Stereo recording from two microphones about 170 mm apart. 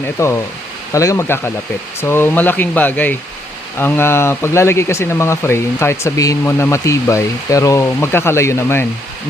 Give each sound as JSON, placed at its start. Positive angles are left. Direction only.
{"t": 0.2, "sound": "speech", "side_deg": 15}